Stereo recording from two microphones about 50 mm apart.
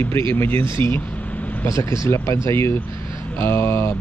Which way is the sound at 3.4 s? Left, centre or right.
Left.